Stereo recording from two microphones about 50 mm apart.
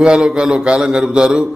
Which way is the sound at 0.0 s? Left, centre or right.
Centre.